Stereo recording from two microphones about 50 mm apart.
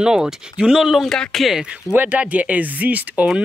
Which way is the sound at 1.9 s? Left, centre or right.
Right.